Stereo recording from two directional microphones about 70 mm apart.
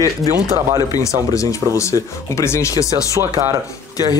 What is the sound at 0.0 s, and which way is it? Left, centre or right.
Speech, left.